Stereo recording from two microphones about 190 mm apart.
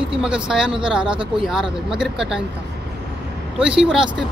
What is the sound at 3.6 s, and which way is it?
Speech, 5° right (ahead or behind).